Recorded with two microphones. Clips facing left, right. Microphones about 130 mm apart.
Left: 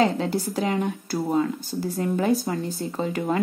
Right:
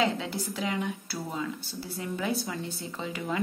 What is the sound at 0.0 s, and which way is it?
Speech, 40° left (ahead or behind).